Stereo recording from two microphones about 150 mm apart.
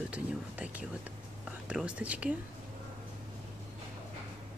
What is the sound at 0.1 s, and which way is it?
Speech, 10° right (ahead or behind).